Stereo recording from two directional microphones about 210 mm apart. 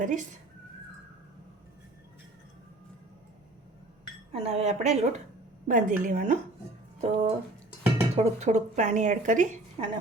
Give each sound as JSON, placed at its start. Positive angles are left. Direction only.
{"t": 0.0, "sound": "a woman's voice", "side_deg": -40}
{"t": 4.3, "sound": "a woman's voice", "side_deg": -30}